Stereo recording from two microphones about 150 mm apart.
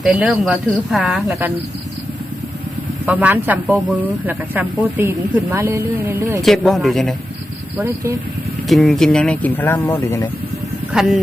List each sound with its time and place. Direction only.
0.0 s speech: 10° right (ahead or behind)
3.1 s speech: 10° right (ahead or behind)
6.4 s speech: centre (ahead or behind)
7.8 s speech: 15° right (ahead or behind)
8.6 s speech: centre (ahead or behind); by 10.2 s 20° left (ahead or behind)
10.9 s speech: 5° right (ahead or behind)